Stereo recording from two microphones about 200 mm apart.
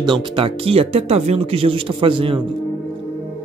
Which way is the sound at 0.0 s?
25° right (ahead or behind).